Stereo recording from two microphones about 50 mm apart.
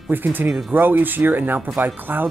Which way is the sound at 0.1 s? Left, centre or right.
Right.